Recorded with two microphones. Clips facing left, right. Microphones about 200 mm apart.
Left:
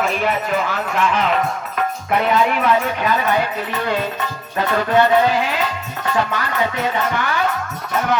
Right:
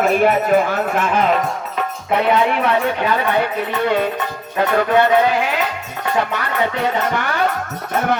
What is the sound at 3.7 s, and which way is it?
Music, 55° right (ahead or behind).